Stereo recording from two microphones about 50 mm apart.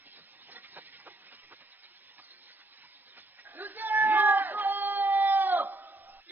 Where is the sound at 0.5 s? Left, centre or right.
Right.